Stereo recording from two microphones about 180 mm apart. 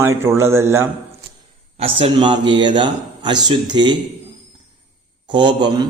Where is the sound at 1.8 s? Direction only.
30° right (ahead or behind).